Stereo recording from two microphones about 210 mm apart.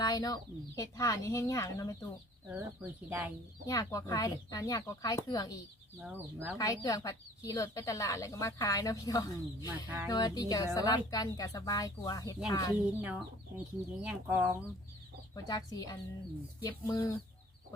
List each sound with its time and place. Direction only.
0.0 s chicken: 20° left (ahead or behind)
0.8 s speech: 15° left (ahead or behind)
2.5 s speech: 10° right (ahead or behind)
3.7 s speech: 15° left (ahead or behind)
6.0 s speech: 5° right (ahead or behind)
6.6 s speech: 15° left (ahead or behind)
9.6 s speech: 10° right (ahead or behind)
10.1 s speech: 20° left (ahead or behind)
13.0 s speech: 5° right (ahead or behind)
15.4 s speech: 20° left (ahead or behind)